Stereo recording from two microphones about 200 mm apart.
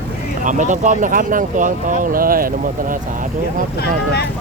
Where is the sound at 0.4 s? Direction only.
40° right (ahead or behind).